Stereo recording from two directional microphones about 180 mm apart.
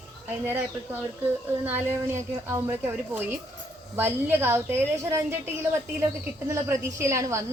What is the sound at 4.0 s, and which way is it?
A woman's voice, 10° right (ahead or behind).